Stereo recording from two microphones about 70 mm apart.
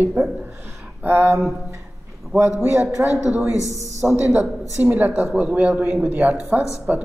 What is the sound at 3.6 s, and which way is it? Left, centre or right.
Speech, left.